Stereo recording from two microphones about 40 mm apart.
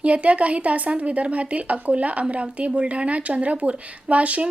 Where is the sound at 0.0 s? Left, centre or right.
Right.